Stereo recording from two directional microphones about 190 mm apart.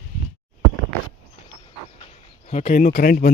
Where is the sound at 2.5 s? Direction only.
40° left (ahead or behind).